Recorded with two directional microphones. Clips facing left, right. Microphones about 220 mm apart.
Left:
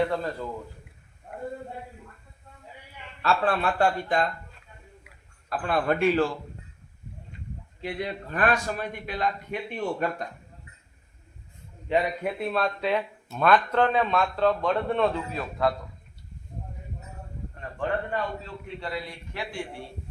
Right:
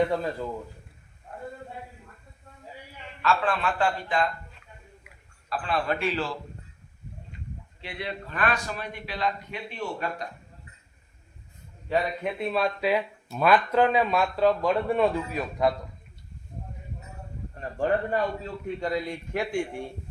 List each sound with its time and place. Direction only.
0.1 s speech: 10° right (ahead or behind)
3.2 s speech: 35° left (ahead or behind)
5.5 s a man's voice: 50° left (ahead or behind)
7.8 s a man's voice: 45° left (ahead or behind)
11.9 s a man's voice: 15° left (ahead or behind)
12.2 s speech: 5° left (ahead or behind); by 15.7 s 15° right (ahead or behind)
17.7 s a man's voice: 40° right (ahead or behind)